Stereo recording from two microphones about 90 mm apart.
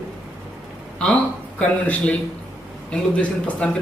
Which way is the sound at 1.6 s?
15° left (ahead or behind).